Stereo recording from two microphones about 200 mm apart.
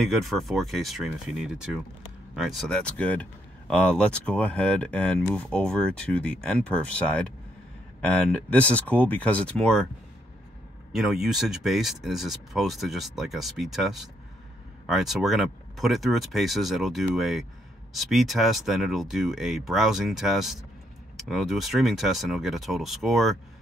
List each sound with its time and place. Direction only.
0.0 s speech: centre (ahead or behind)
10.9 s speech: centre (ahead or behind)